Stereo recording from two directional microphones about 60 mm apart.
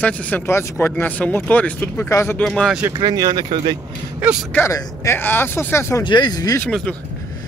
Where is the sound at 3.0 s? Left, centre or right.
Right.